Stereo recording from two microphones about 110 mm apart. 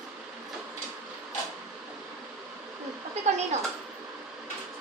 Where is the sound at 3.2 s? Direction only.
90° right.